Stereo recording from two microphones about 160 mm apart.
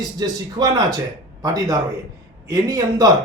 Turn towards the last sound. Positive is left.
turn(degrees=-25)  # may be behind; listen again after turning